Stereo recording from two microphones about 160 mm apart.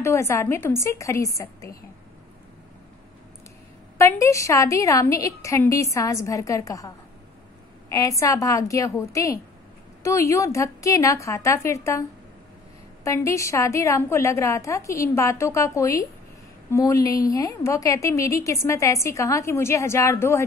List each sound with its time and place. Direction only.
0.0 s a woman's voice: 15° left (ahead or behind)
4.0 s a woman's voice: 20° left (ahead or behind)
7.9 s a woman's voice: 20° left (ahead or behind)
13.0 s a woman's voice: 20° left (ahead or behind)